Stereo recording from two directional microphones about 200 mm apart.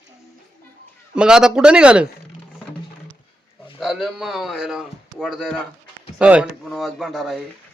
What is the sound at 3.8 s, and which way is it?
Speech, centre (ahead or behind).